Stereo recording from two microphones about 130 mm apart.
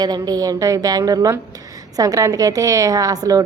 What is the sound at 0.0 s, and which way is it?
A woman's voice, 30° right (ahead or behind).